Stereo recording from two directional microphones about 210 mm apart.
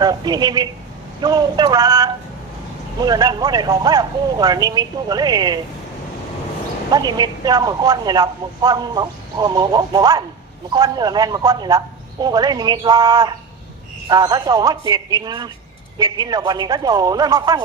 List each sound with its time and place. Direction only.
0.0 s speech: 20° right (ahead or behind)
6.9 s speech: 20° right (ahead or behind)